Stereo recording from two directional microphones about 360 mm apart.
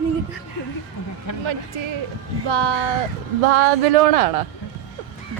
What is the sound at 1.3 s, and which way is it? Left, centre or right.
Speech, left.